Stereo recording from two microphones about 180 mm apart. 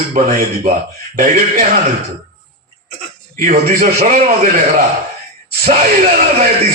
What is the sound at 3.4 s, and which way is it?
A man's voice, 45° right (ahead or behind).